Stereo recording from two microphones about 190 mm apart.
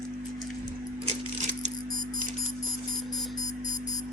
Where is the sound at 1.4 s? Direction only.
40° right (ahead or behind).